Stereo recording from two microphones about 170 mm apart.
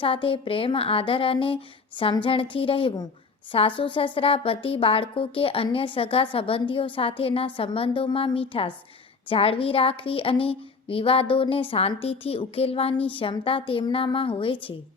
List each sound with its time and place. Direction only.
0.0 s a woman's voice: 30° left (ahead or behind)